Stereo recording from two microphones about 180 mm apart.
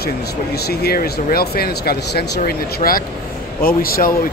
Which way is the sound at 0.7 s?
60° left (ahead or behind).